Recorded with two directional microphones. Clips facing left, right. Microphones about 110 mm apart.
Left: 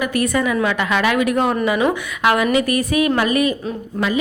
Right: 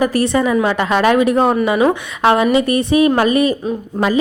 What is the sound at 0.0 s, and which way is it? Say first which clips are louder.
A woman's voice: right 4 dB; 35° right (ahead or behind).